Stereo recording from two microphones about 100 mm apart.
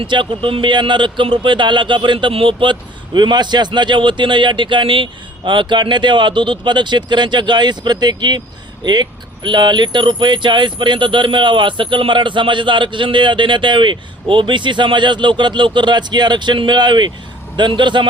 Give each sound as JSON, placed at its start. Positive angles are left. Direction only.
{"t": 0.0, "sound": "speech", "side_deg": -55}